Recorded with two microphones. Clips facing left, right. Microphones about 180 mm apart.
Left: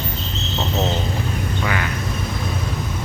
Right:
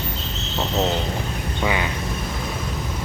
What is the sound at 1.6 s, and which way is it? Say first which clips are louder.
Speech: right 3 dB; 20° right (ahead or behind).